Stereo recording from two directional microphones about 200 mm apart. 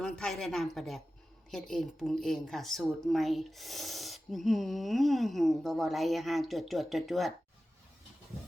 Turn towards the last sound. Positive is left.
turn(degrees=0)  # may be behind; listen again after turning